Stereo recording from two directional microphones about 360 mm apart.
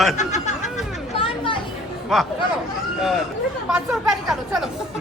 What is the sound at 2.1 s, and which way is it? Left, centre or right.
Speech, centre.